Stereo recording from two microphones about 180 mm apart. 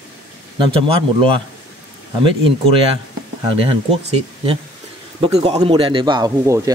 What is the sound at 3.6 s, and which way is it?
Speech, 30° right (ahead or behind).